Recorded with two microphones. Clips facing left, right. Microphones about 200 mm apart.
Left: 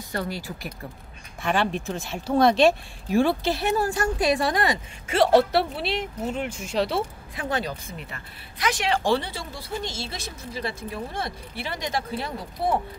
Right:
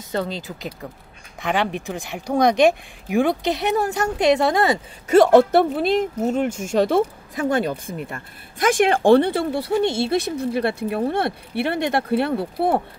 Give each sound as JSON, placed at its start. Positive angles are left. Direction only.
{"t": 0.1, "sound": "speech", "side_deg": -20}
{"t": 5.0, "sound": "speech", "side_deg": -45}